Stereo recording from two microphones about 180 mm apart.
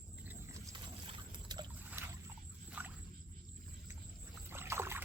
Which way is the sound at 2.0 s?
15° right (ahead or behind).